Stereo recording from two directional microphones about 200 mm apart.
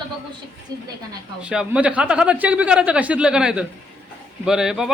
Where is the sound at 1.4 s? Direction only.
5° right (ahead or behind).